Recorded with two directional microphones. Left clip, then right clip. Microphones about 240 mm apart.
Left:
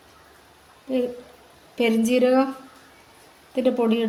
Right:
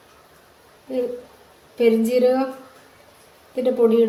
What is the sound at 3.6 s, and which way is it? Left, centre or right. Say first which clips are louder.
Speech: right 4 dB; left.